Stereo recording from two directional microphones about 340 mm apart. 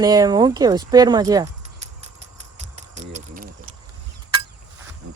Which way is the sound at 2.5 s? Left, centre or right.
Right.